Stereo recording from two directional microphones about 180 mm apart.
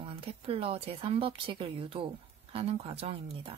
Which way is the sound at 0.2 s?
30° right (ahead or behind).